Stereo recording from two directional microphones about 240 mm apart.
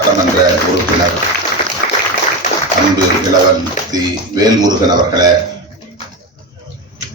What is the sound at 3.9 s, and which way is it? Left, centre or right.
A man's voice, centre.